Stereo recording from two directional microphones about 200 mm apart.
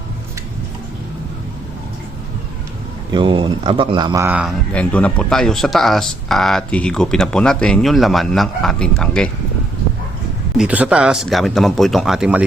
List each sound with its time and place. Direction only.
3.1 s speech: 25° right (ahead or behind); by 4.5 s 5° right (ahead or behind)
4.7 s speech: 5° left (ahead or behind)
10.6 s speech: 5° right (ahead or behind)